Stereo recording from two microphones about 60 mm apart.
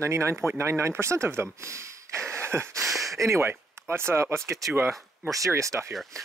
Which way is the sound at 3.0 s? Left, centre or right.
Right.